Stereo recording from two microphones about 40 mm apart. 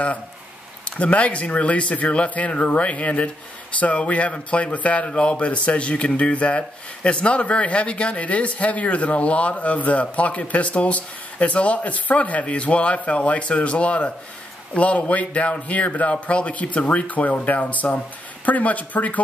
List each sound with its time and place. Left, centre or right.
0.8 s speech: left